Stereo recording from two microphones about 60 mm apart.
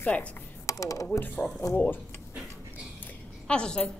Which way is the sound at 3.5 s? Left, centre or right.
Centre.